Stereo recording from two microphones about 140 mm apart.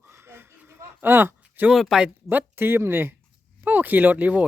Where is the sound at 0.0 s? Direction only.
15° right (ahead or behind).